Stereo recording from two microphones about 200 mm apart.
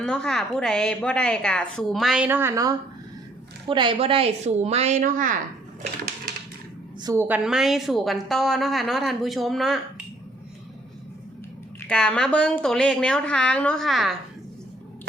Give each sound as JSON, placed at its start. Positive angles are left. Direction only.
{"t": 0.0, "sound": "a woman's voice", "side_deg": 5}
{"t": 3.7, "sound": "speech", "side_deg": -25}
{"t": 7.0, "sound": "a woman's voice", "side_deg": -15}
{"t": 11.9, "sound": "a woman's voice", "side_deg": 5}